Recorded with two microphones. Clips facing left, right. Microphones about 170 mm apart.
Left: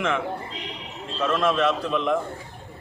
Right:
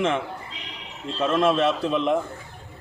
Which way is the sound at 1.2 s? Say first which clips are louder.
Right 2 dB; 30° right (ahead or behind).